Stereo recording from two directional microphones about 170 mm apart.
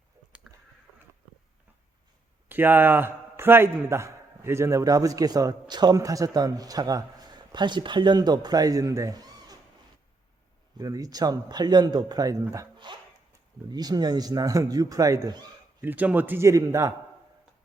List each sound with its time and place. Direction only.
0.4 s a sound: centre (ahead or behind)
2.5 s a man's voice: 10° right (ahead or behind)
10.8 s a man's voice: 20° right (ahead or behind)
15.8 s a man's voice: 10° right (ahead or behind)